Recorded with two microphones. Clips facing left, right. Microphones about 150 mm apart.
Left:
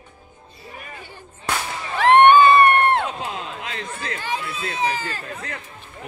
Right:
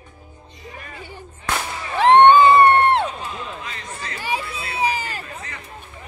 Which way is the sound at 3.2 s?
65° left (ahead or behind).